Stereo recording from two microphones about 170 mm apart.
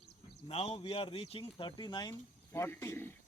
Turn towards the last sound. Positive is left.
turn(degrees=10)  # may be behind; listen again after turning